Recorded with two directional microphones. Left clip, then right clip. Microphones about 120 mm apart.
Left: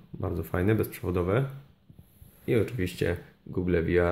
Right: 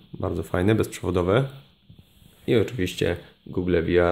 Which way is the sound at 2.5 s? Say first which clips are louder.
Right 5 dB; 25° right (ahead or behind).